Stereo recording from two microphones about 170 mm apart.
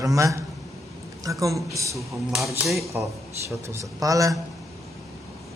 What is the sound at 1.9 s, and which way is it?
A man's voice, centre (ahead or behind).